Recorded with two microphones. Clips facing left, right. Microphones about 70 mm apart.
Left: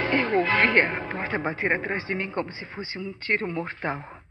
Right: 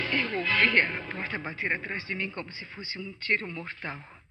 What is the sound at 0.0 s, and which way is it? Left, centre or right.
Speech, left.